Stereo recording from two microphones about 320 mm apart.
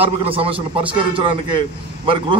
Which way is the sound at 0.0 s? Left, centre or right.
Centre.